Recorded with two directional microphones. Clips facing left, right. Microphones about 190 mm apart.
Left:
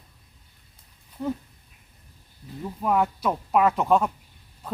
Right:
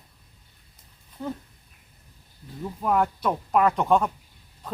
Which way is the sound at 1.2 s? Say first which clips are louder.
Left 4 dB; centre (ahead or behind).